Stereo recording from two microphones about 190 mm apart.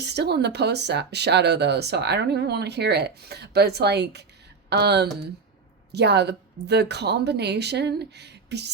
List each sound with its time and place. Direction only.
0.0 s speech: 60° right (ahead or behind)